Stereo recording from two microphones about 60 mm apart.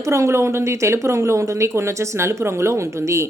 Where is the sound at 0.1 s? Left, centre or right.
Right.